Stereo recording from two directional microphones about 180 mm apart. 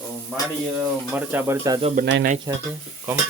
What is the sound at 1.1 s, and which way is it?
Speech, 10° right (ahead or behind).